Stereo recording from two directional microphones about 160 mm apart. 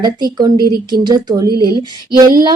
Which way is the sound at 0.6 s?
70° right (ahead or behind).